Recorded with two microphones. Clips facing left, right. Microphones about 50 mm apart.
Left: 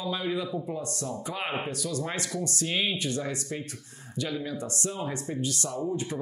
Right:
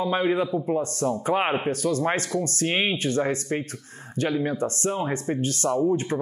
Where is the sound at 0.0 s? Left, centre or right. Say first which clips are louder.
Right 8 dB; right.